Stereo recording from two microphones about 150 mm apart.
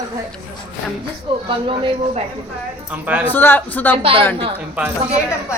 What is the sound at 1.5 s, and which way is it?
Speech, 35° right (ahead or behind).